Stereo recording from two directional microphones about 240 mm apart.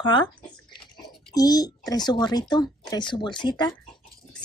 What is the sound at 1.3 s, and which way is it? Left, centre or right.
A woman's voice, centre.